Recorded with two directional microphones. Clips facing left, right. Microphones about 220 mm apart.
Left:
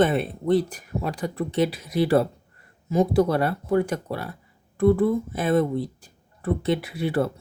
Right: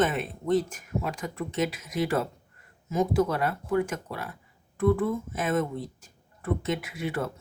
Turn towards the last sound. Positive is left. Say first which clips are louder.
# left 7 dB
turn(degrees=35)  # may be behind; listen again after turning